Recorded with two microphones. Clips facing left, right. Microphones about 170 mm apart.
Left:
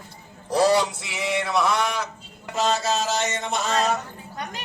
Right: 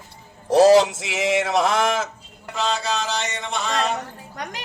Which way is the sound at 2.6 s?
40° left (ahead or behind).